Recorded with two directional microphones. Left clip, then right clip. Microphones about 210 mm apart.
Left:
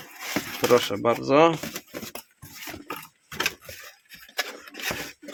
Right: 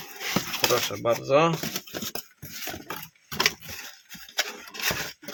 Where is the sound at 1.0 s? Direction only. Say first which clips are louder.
Left 3 dB; 55° left (ahead or behind).